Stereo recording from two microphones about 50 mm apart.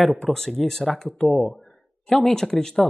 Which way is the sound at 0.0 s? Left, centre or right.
Centre.